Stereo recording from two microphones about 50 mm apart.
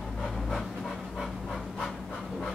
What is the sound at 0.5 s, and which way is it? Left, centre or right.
Pant, centre.